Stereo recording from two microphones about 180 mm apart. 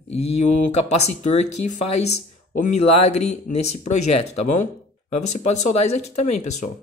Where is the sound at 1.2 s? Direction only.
40° left (ahead or behind).